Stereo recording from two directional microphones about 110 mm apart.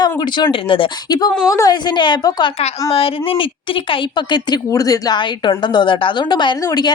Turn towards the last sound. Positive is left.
turn(degrees=35)  # may be behind; listen again after turning